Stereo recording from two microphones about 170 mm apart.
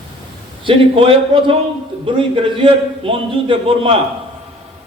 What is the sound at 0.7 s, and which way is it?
A man's voice, 30° right (ahead or behind).